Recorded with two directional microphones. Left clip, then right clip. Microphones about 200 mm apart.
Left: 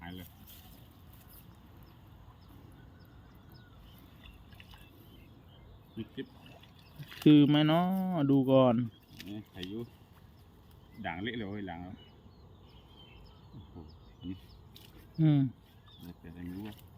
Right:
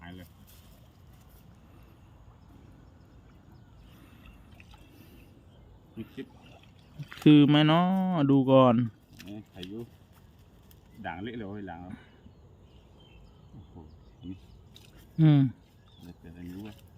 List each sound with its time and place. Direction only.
0.0 s boat: 20° right (ahead or behind)
7.3 s speech: 25° right (ahead or behind)
11.0 s speech: 5° right (ahead or behind)
15.2 s speech: 30° right (ahead or behind)
16.0 s a sound: 5° right (ahead or behind)